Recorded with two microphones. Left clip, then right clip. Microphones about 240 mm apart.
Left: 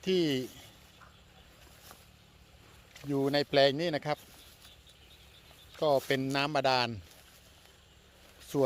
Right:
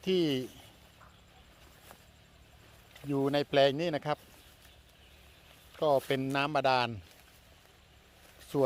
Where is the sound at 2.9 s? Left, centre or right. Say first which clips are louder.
Left 1 dB; centre.